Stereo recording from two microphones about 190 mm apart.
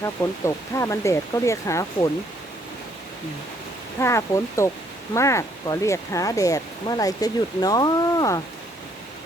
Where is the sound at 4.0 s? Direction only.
15° left (ahead or behind).